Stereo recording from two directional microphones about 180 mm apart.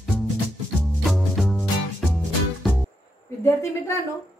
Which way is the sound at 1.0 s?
Centre (ahead or behind).